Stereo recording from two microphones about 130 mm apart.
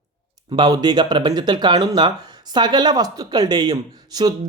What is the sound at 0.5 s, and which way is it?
Speech, 30° right (ahead or behind).